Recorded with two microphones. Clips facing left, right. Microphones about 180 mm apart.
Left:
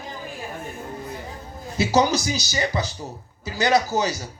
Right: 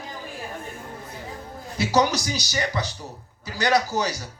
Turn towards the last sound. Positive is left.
turn(degrees=25)  # may be behind; listen again after turning